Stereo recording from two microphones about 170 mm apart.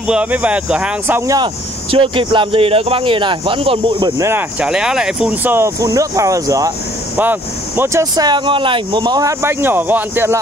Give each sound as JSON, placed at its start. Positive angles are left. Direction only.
{"t": 0.0, "sound": "speech", "side_deg": -5}
{"t": 4.2, "sound": "speech", "side_deg": -15}